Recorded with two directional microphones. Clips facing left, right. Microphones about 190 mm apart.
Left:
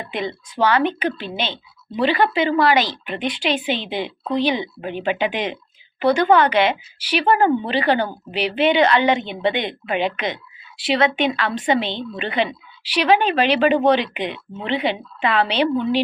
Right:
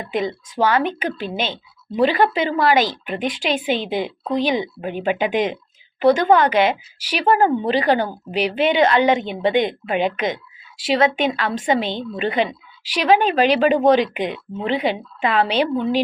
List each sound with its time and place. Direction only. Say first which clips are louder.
0.1 s a woman's voice: right 6 dB; 40° right (ahead or behind)